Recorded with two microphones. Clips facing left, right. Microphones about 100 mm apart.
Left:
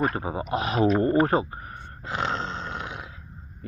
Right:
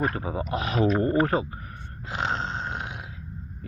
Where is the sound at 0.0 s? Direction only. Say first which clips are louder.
Left 1 dB; 30° left (ahead or behind).